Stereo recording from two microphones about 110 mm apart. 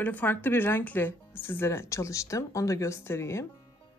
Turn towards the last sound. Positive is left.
turn(degrees=25)  # may be behind; listen again after turning